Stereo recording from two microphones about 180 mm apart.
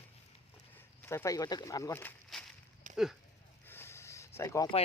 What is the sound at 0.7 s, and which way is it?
Speech, 15° left (ahead or behind).